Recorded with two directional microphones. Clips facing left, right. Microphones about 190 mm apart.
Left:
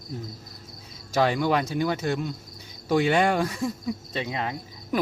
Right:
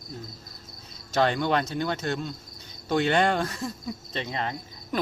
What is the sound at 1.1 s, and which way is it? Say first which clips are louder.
Speech: left 1 dB; 5° left (ahead or behind).